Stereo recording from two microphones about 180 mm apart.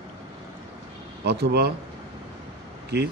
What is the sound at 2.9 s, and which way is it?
Speech, 65° right (ahead or behind).